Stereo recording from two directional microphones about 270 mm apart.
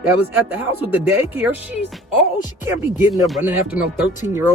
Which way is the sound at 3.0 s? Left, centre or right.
Centre.